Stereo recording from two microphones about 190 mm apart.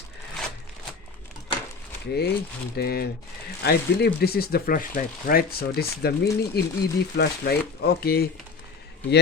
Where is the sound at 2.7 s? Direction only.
55° left (ahead or behind).